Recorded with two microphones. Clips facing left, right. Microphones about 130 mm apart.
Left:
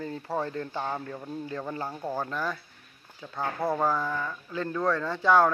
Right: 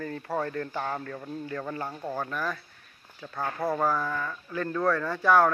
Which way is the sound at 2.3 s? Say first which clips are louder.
Even; 25° left (ahead or behind).